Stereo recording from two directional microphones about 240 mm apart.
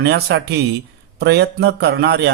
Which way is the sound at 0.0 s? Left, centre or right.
Right.